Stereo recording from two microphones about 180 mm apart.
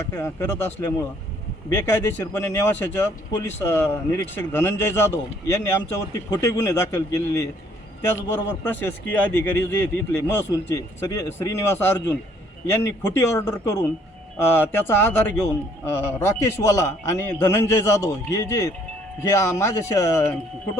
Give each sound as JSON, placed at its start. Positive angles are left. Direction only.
{"t": 0.0, "sound": "a man's voice", "side_deg": 15}